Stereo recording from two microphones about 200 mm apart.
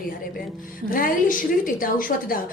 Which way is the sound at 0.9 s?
45° left (ahead or behind).